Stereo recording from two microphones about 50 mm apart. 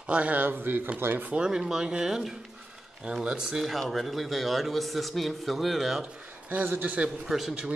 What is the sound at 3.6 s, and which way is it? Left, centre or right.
A man's voice, centre.